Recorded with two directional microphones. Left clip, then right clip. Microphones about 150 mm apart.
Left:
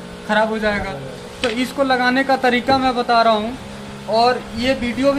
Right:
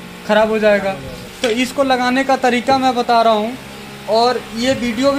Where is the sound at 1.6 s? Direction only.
20° right (ahead or behind).